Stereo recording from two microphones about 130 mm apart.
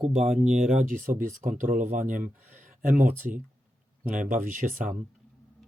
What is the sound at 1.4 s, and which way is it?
Speech, 90° right.